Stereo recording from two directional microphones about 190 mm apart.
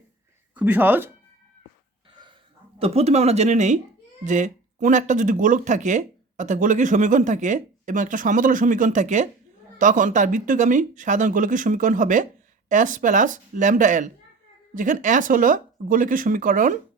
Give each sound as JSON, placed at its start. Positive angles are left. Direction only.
{"t": 0.5, "sound": "speech", "side_deg": -10}
{"t": 2.7, "sound": "speech", "side_deg": -30}